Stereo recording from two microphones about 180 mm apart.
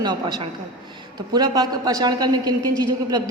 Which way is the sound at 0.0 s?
25° right (ahead or behind).